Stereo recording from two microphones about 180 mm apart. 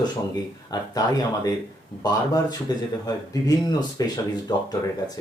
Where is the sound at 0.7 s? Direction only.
20° left (ahead or behind).